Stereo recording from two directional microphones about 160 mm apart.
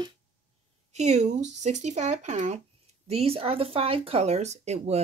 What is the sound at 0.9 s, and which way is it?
Speech, 45° right (ahead or behind).